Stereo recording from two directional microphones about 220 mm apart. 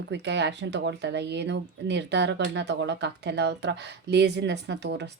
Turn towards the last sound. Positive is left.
turn(degrees=-50)  # may be behind; listen again after turning